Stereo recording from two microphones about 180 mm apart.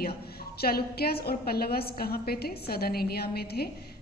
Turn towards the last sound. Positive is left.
turn(degrees=60)  # may be behind; listen again after turning